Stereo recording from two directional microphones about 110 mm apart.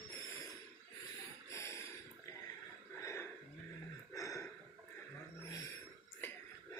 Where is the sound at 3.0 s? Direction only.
25° left (ahead or behind).